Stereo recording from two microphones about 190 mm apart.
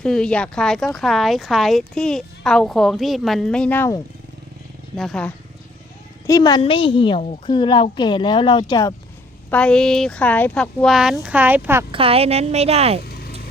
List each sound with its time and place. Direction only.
0.0 s speech: 5° left (ahead or behind)
4.9 s speech: 5° left (ahead or behind)
6.2 s a woman's voice: 20° left (ahead or behind)
9.5 s speech: 5° left (ahead or behind); by 11.9 s 10° right (ahead or behind)
11.9 s a woman's voice: 30° right (ahead or behind)
13.1 s vehicle: 55° left (ahead or behind)